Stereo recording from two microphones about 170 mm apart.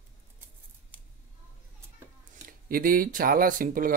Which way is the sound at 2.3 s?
55° right (ahead or behind).